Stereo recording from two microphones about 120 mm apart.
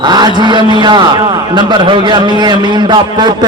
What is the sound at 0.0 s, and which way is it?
A man's voice, 35° right (ahead or behind).